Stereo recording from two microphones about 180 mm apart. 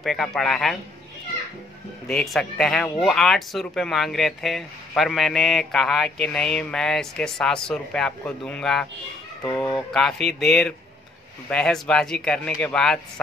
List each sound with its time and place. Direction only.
0.0 s speech: centre (ahead or behind)
2.0 s speech: centre (ahead or behind)
9.4 s speech: 15° left (ahead or behind)
9.9 s speech: centre (ahead or behind)